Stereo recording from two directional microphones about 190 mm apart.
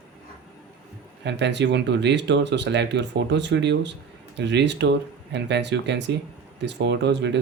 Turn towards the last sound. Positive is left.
turn(degrees=-65)  # may be behind; listen again after turning